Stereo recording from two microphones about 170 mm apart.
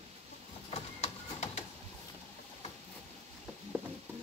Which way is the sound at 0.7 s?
40° left (ahead or behind).